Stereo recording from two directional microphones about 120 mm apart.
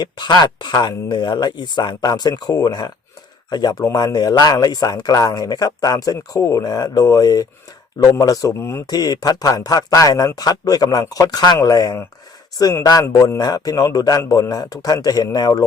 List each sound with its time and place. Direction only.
0.0 s speech: 35° left (ahead or behind)